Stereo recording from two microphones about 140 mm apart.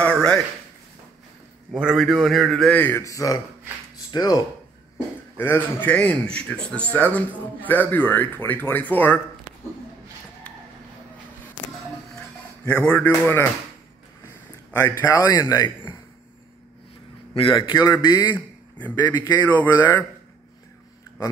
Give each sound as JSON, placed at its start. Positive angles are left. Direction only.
{"t": 0.0, "sound": "a sound", "side_deg": 5}
{"t": 1.7, "sound": "a man's voice", "side_deg": -5}
{"t": 2.7, "sound": "speech", "side_deg": 15}
{"t": 5.4, "sound": "a man's voice", "side_deg": 15}
{"t": 12.6, "sound": "a man's voice", "side_deg": 10}
{"t": 14.9, "sound": "speech", "side_deg": 30}
{"t": 17.3, "sound": "a man's voice", "side_deg": 40}
{"t": 18.3, "sound": "a man's voice", "side_deg": 10}